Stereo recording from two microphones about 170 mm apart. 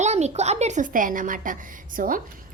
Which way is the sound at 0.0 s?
40° right (ahead or behind).